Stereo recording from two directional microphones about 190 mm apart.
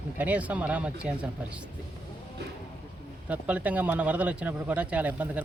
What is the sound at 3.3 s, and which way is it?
Speech, 5° right (ahead or behind).